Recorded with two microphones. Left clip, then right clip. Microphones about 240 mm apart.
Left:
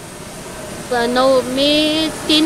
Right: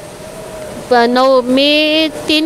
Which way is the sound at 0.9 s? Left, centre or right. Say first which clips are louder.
Right 5 dB; right.